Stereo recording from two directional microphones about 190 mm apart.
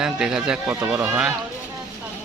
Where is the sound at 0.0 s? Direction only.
5° right (ahead or behind).